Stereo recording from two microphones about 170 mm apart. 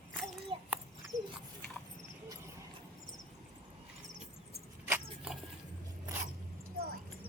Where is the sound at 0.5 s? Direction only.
35° right (ahead or behind).